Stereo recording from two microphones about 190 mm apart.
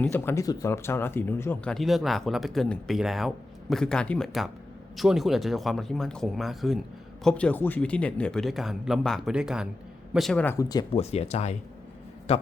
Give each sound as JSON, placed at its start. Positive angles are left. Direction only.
{"t": 0.0, "sound": "speech", "side_deg": 10}
{"t": 10.9, "sound": "a man's voice", "side_deg": 35}